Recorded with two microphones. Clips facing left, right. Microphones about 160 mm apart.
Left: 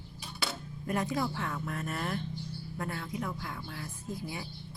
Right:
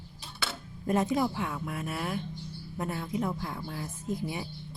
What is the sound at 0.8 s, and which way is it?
Speech, 25° right (ahead or behind).